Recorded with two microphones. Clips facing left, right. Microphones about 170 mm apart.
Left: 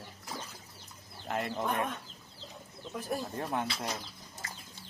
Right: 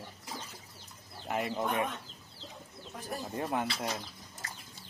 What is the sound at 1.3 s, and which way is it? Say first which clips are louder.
Chicken: right 1 dB; 5° right (ahead or behind).